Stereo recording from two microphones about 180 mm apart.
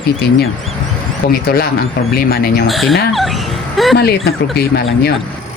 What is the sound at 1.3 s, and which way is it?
Speech, 60° left (ahead or behind).